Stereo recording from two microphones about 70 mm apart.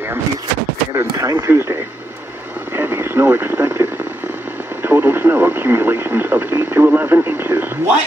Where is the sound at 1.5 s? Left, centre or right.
Right.